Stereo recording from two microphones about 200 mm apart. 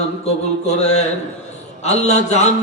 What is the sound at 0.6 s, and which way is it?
A man's voice, 35° left (ahead or behind).